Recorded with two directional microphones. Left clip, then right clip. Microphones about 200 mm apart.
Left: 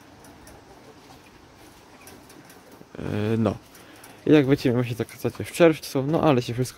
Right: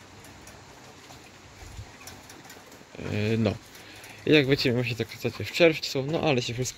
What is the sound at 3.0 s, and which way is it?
Speech, 15° left (ahead or behind).